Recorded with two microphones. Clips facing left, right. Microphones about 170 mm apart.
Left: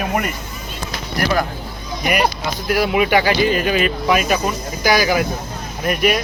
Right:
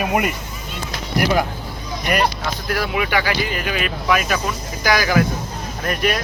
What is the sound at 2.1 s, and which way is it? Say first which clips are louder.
Speech: left 1 dB; 15° left (ahead or behind).